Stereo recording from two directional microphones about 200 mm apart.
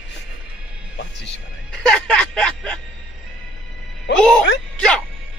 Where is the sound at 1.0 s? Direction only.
60° left (ahead or behind).